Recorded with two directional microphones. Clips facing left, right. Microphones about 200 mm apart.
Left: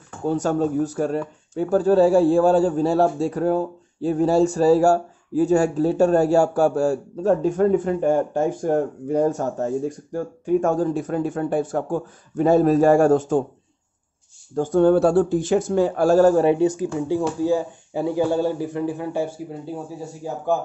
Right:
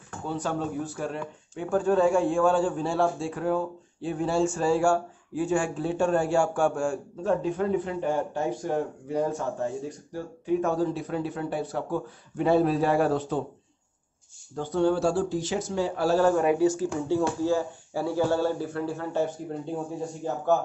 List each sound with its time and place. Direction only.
0.3 s speech: 45° left (ahead or behind)
14.5 s speech: 45° left (ahead or behind); by 20.5 s 5° left (ahead or behind)